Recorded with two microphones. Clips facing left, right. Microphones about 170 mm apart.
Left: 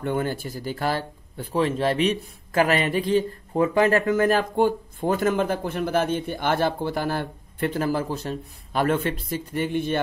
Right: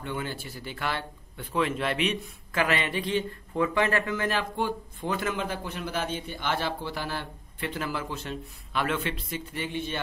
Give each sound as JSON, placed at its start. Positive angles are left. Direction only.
{"t": 0.0, "sound": "speech", "side_deg": 45}